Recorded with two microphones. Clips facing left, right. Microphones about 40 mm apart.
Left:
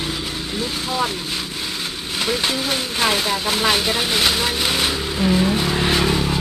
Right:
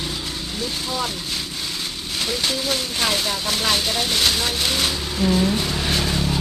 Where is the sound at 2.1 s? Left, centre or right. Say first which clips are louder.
Left 3 dB; centre.